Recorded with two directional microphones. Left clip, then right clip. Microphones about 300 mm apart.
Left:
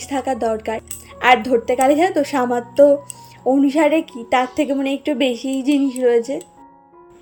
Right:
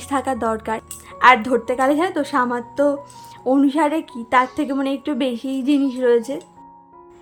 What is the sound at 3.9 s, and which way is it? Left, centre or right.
A woman's voice, right.